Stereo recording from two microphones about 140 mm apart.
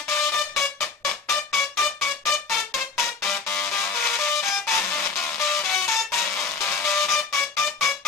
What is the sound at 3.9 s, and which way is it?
Music, 15° left (ahead or behind).